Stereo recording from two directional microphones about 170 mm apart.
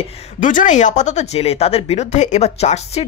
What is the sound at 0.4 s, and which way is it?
Speech, 50° left (ahead or behind).